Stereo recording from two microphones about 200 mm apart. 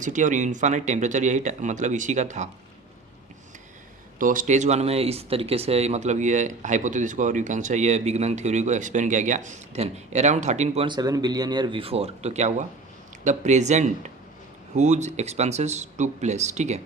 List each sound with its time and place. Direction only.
0.0 s speech: 40° right (ahead or behind)
4.2 s speech: 40° right (ahead or behind)